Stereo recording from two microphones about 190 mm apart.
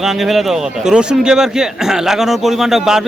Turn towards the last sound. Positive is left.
turn(degrees=0)  # may be behind; listen again after turning